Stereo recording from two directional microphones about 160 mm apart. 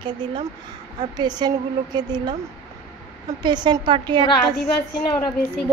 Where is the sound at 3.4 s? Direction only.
25° right (ahead or behind).